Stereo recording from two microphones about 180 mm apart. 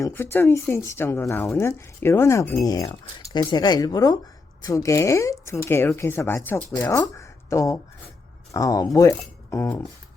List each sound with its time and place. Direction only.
0.0 s speech: 10° left (ahead or behind)